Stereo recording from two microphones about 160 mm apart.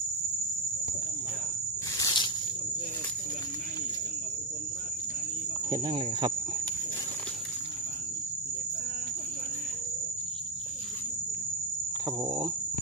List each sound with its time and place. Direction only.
2.0 s snake: 30° left (ahead or behind)
5.9 s cricket: 25° right (ahead or behind)